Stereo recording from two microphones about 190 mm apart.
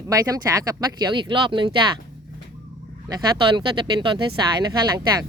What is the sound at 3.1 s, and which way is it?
Speech, 20° right (ahead or behind).